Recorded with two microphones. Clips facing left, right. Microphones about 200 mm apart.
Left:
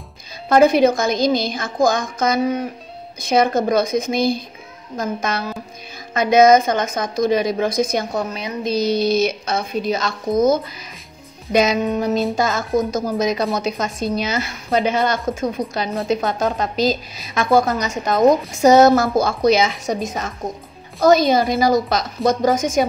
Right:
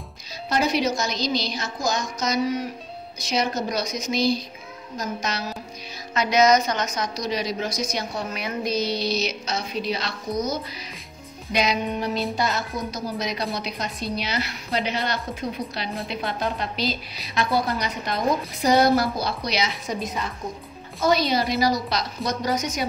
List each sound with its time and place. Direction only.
0.5 s a woman's voice: 55° left (ahead or behind)
8.3 s speech: 25° left (ahead or behind)
8.7 s a woman's voice: 45° left (ahead or behind)